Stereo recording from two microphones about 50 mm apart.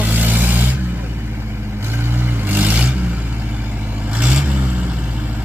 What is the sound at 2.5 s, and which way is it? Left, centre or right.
Vehicle, right.